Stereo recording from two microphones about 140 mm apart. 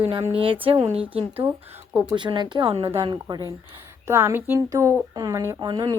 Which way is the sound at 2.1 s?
35° right (ahead or behind).